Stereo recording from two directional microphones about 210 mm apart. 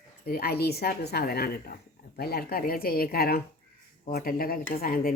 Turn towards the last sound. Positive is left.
turn(degrees=45)  # may be behind; listen again after turning